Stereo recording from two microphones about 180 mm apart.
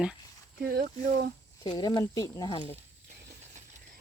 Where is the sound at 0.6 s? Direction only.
55° right (ahead or behind).